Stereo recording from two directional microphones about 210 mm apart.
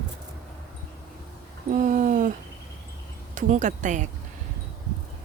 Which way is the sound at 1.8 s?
35° right (ahead or behind).